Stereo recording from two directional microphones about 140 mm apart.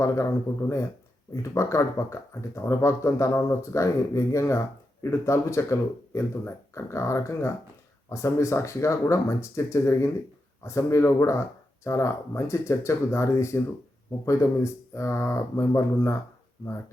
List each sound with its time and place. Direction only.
0.0 s speech: 20° left (ahead or behind)